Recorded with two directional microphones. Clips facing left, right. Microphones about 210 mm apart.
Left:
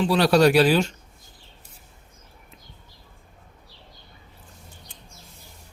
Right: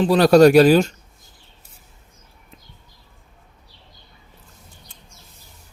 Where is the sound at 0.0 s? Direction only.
45° right (ahead or behind).